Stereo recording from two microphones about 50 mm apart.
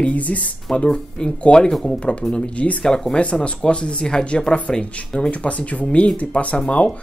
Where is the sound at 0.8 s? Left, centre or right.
Centre.